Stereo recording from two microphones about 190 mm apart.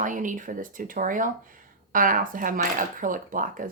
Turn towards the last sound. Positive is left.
turn(degrees=-45)  # may be behind; listen again after turning